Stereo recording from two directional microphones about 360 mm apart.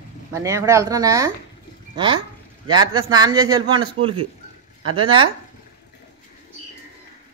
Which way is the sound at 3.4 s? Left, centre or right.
Centre.